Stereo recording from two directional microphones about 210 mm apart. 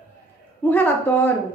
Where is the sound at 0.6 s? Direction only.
10° left (ahead or behind).